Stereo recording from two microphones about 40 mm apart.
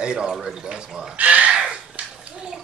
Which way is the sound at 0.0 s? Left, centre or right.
Right.